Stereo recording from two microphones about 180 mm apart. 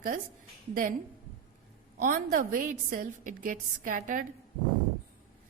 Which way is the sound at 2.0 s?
50° right (ahead or behind).